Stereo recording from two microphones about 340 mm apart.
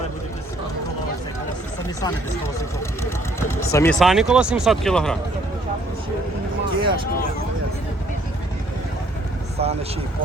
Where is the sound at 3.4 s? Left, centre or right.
Centre.